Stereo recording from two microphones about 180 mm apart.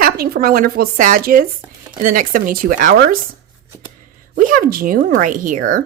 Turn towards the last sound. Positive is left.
turn(degrees=-50)  # may be behind; listen again after turning